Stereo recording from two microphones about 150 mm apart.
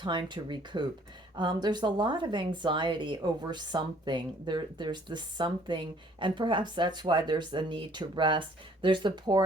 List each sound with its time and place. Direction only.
0.0 s speech: 30° right (ahead or behind)